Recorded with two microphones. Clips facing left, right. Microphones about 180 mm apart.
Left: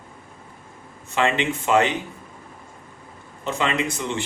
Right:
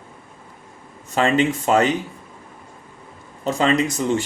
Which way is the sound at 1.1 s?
40° right (ahead or behind).